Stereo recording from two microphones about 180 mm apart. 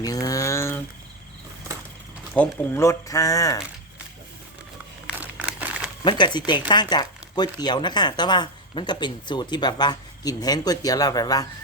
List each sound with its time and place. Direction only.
0.0 s a sound: 20° left (ahead or behind)
2.3 s speech: 10° left (ahead or behind)
5.0 s crumpling: 5° right (ahead or behind)
6.1 s speech: 25° left (ahead or behind)